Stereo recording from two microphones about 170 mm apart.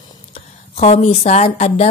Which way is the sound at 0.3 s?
35° left (ahead or behind).